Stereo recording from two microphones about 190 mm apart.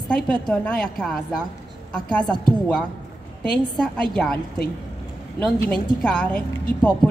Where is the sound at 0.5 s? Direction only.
5° left (ahead or behind).